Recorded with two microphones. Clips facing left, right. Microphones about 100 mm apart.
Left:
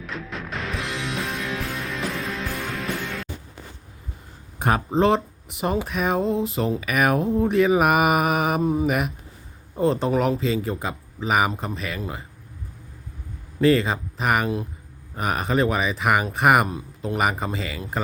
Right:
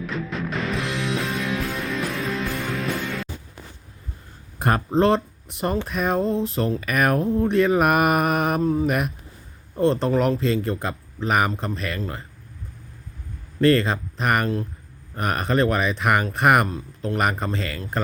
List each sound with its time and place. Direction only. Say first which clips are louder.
0.0 s music: right 5 dB; centre (ahead or behind)
4.6 s speech: right 1 dB; centre (ahead or behind)
8.6 s mantra: right 1 dB; 15° left (ahead or behind)
8.9 s speech: even; centre (ahead or behind)
13.6 s speech: right 1 dB; 5° left (ahead or behind)